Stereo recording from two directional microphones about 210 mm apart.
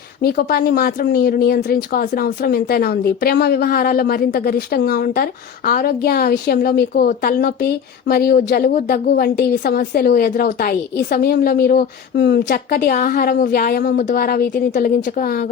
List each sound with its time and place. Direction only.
0.2 s speech: 45° left (ahead or behind)